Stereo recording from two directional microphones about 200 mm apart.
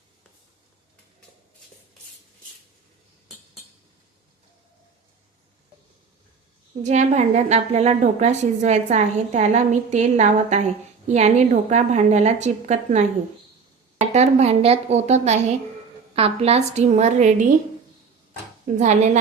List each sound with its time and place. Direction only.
6.8 s a woman's voice: 35° right (ahead or behind)
14.0 s a woman's voice: 35° right (ahead or behind)
18.8 s a woman's voice: 35° right (ahead or behind)